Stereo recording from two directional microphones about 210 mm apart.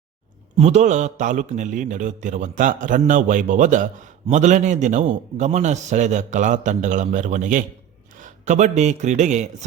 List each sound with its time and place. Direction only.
0.5 s a man's voice: 30° right (ahead or behind)